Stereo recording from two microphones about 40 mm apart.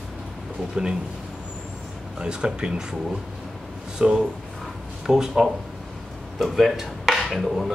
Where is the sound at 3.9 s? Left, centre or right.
Centre.